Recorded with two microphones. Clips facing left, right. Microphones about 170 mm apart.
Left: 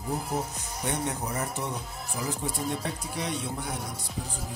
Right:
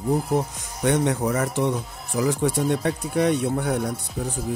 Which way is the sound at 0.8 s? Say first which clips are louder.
Right 10 dB; 90° right.